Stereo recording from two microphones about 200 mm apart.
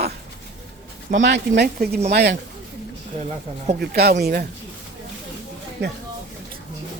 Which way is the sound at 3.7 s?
50° right (ahead or behind).